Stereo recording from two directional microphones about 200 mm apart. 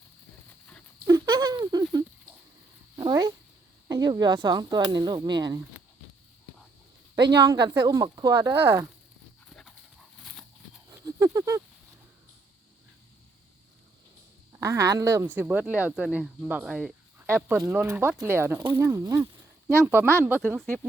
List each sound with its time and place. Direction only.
1.0 s a sound: 15° right (ahead or behind)
2.9 s cat: 20° right (ahead or behind)
3.8 s speech: 20° right (ahead or behind)
7.4 s speech: 20° right (ahead or behind)
9.5 s dog: centre (ahead or behind)
10.8 s a sound: 15° right (ahead or behind)
14.6 s speech: 15° right (ahead or behind)